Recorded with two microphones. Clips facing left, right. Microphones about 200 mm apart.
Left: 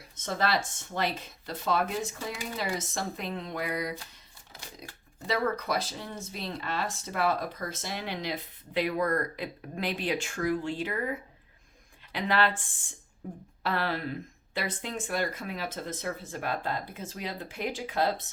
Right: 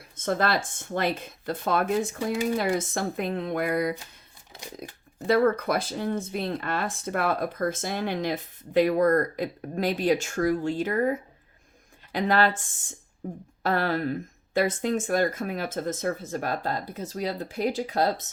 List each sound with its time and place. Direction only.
0.3 s speech: 55° right (ahead or behind)